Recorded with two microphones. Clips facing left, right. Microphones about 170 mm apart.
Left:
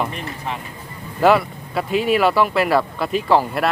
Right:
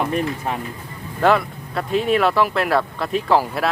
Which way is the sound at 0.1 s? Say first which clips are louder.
Right 6 dB; 45° right (ahead or behind).